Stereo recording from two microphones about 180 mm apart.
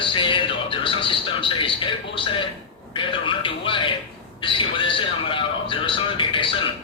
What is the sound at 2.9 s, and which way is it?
A man's voice, 30° left (ahead or behind).